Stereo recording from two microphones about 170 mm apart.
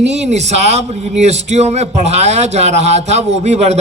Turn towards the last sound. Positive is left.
turn(degrees=-40)  # may be behind; listen again after turning